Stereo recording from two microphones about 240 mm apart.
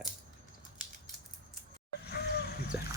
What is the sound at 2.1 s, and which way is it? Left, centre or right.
Vehicle, left.